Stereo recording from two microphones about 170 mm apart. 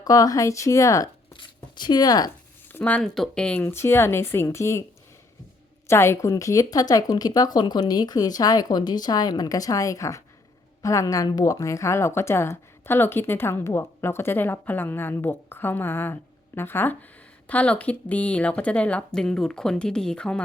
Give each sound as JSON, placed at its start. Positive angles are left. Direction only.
{"t": 0.0, "sound": "a woman's voice", "side_deg": 20}
{"t": 2.7, "sound": "a woman's voice", "side_deg": 10}
{"t": 5.9, "sound": "a woman's voice", "side_deg": 15}